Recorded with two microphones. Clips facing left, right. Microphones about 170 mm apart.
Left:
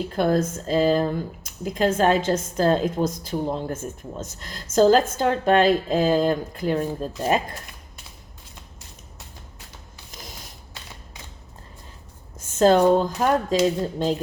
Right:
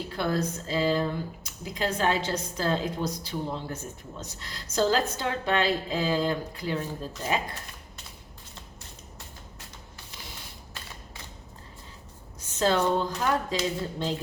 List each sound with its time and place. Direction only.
0.1 s speech: 45° left (ahead or behind)
10.1 s a sound: 40° left (ahead or behind)
12.4 s speech: 50° left (ahead or behind)